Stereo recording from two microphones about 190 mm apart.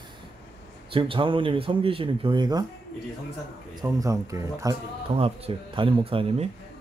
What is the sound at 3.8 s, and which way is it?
Speech, 15° right (ahead or behind).